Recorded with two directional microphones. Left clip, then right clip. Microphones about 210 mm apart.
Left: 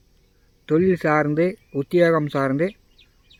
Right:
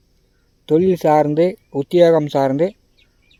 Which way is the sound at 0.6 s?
15° right (ahead or behind).